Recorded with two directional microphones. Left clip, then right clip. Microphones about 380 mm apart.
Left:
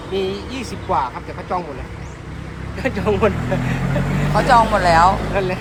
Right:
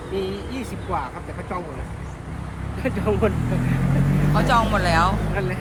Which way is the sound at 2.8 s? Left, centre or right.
Centre.